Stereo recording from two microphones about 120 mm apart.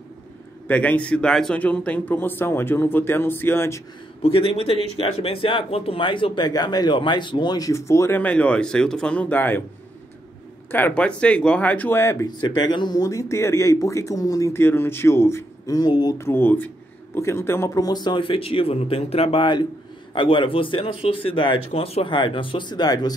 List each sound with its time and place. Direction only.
0.7 s a man's voice: 15° left (ahead or behind)
4.2 s speech: 50° left (ahead or behind); by 8.2 s 25° left (ahead or behind)
8.2 s a man's voice: 10° left (ahead or behind)
10.7 s a man's voice: 15° left (ahead or behind)
12.4 s speech: 35° left (ahead or behind)
16.2 s a man's voice: 20° left (ahead or behind); by 23.1 s 35° left (ahead or behind)